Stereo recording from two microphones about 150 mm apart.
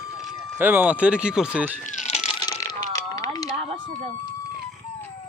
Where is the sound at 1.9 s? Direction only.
55° left (ahead or behind).